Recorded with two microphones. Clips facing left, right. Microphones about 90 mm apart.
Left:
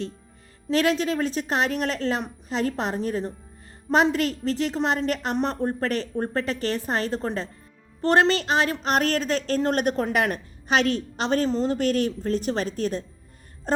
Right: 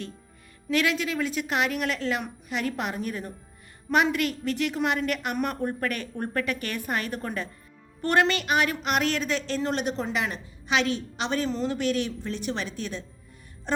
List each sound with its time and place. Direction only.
0.7 s a woman's voice: 35° left (ahead or behind)